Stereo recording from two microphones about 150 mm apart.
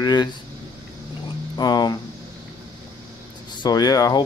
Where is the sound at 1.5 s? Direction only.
30° left (ahead or behind).